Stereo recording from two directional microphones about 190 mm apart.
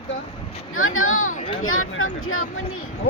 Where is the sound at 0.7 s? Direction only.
90° left.